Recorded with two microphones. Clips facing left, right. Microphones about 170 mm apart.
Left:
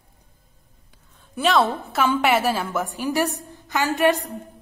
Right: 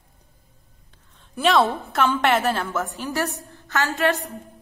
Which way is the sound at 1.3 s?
Centre (ahead or behind).